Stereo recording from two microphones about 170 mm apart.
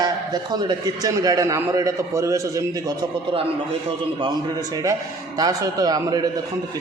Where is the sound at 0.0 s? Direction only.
25° right (ahead or behind).